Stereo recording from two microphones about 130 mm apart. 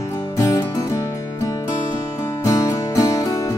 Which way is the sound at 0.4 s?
25° left (ahead or behind).